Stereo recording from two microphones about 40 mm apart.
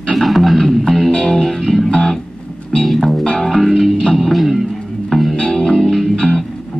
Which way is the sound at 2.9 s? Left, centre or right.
Centre.